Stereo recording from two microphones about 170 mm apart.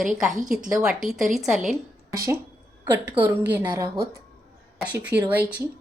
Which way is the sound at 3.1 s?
10° right (ahead or behind).